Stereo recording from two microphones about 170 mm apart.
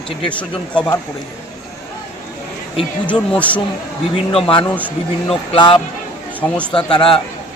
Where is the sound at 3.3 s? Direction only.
10° left (ahead or behind).